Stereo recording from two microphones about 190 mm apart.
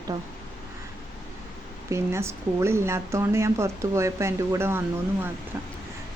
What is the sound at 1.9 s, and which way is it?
A woman's voice, 15° right (ahead or behind).